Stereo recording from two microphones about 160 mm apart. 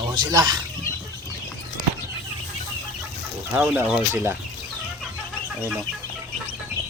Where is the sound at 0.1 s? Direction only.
25° right (ahead or behind).